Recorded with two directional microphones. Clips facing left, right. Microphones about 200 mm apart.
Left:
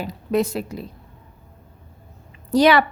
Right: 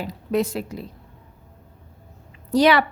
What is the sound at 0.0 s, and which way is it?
Speech, 45° left (ahead or behind).